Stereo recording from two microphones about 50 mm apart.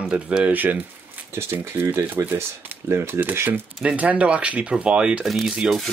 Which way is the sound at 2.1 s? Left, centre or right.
Right.